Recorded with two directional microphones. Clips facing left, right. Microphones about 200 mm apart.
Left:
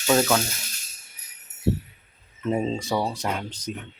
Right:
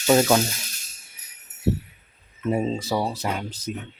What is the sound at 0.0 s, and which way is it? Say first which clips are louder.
Speech: right 3 dB; 20° right (ahead or behind).